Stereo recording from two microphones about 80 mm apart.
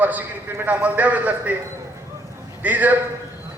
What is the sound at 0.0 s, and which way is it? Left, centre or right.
Speech, right.